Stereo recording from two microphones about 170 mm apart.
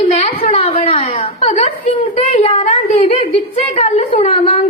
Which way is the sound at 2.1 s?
35° left (ahead or behind).